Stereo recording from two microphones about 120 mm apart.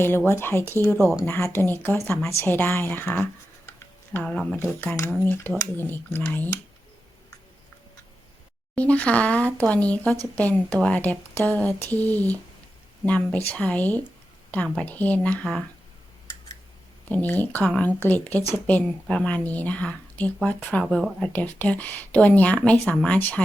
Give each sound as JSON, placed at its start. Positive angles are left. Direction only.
{"t": 0.3, "sound": "speech", "side_deg": 20}
{"t": 4.8, "sound": "speech", "side_deg": 20}
{"t": 8.7, "sound": "speech", "side_deg": 10}
{"t": 17.1, "sound": "speech", "side_deg": 15}